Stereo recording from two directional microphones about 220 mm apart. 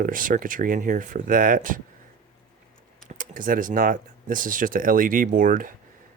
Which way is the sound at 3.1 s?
40° right (ahead or behind).